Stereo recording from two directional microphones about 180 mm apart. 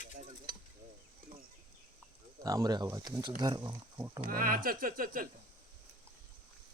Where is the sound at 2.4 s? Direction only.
20° right (ahead or behind).